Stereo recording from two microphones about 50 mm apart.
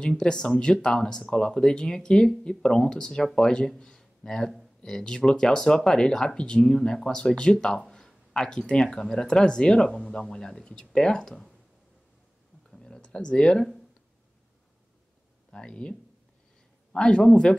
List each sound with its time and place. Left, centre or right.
0.0 s speech: centre
12.7 s a sound: centre
15.5 s speech: centre